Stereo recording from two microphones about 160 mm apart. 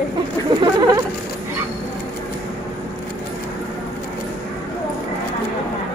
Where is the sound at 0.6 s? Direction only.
25° right (ahead or behind).